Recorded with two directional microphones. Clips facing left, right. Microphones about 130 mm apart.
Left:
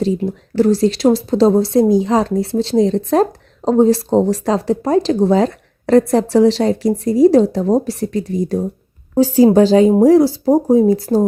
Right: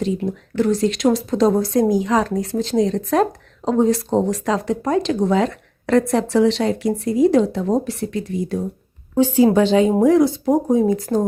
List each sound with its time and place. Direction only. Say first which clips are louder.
0.0 s a woman's voice: left 4 dB; 35° left (ahead or behind)